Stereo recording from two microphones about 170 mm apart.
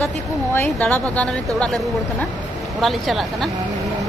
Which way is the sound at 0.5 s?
10° left (ahead or behind).